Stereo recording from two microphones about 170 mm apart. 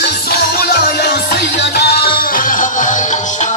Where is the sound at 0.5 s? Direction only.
65° left (ahead or behind).